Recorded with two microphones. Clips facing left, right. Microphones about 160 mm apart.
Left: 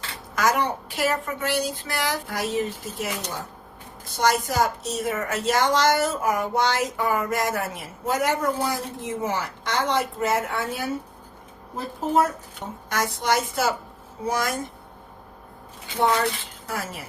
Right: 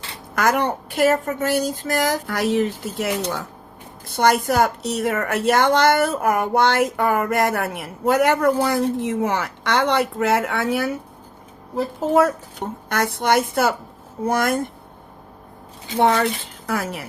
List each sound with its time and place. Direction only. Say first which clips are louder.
0.3 s a woman's voice: right 3 dB; 55° right (ahead or behind)
2.2 s speech: right 6 dB; 75° right (ahead or behind)
4.1 s speech: right 5 dB; 60° right (ahead or behind)
12.9 s speech: right 4 dB; 60° right (ahead or behind)
16.0 s speech: right 4 dB; 60° right (ahead or behind)